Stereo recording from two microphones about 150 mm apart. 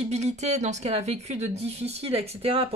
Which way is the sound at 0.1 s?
50° right (ahead or behind).